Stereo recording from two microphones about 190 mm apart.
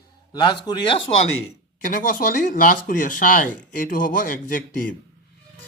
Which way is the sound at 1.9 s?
45° left (ahead or behind).